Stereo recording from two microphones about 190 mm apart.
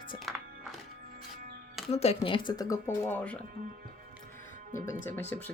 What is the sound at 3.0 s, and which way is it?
Speech, 5° left (ahead or behind).